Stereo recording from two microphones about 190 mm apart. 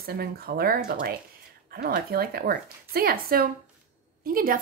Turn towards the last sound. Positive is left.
turn(degrees=-50)  # may be behind; listen again after turning